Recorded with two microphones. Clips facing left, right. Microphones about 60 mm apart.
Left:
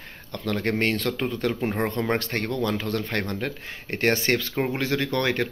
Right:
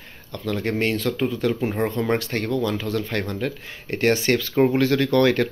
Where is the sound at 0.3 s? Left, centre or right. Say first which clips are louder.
Right 1 dB; left.